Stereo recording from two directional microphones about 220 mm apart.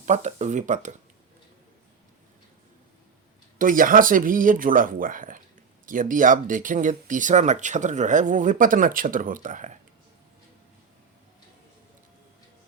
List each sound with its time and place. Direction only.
0.0 s speech: 30° right (ahead or behind)
3.6 s speech: 40° right (ahead or behind)